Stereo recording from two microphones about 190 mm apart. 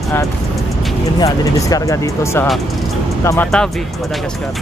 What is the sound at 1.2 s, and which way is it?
Speech, 20° left (ahead or behind).